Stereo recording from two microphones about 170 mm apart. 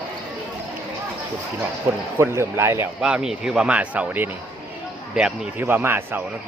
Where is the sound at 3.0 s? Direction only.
5° right (ahead or behind).